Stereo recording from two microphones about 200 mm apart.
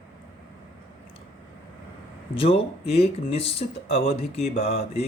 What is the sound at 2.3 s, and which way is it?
Speech, 30° left (ahead or behind).